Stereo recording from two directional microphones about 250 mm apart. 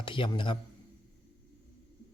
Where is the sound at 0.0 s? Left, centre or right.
Centre.